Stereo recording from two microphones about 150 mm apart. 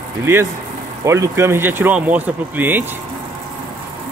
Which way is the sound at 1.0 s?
20° right (ahead or behind).